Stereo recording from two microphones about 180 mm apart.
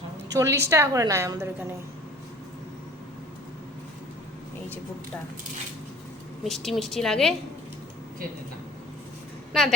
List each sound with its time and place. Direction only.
0.3 s a woman's voice: 15° right (ahead or behind)
6.4 s a woman's voice: centre (ahead or behind)
9.5 s a woman's voice: centre (ahead or behind)